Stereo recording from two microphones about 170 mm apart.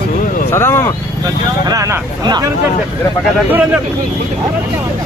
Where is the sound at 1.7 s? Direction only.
20° right (ahead or behind).